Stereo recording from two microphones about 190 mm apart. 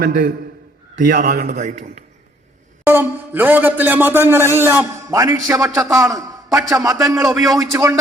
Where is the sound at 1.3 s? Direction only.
55° right (ahead or behind).